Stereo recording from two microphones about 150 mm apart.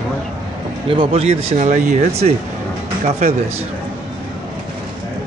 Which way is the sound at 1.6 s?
55° right (ahead or behind).